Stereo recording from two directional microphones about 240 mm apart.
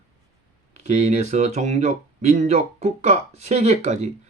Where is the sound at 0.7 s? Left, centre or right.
Right.